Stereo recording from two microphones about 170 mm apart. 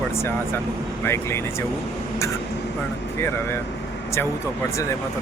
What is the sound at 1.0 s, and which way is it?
Speech, 15° left (ahead or behind).